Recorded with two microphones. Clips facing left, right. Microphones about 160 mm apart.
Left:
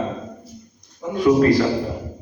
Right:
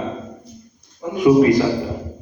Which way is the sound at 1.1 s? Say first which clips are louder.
Right 2 dB; 10° right (ahead or behind).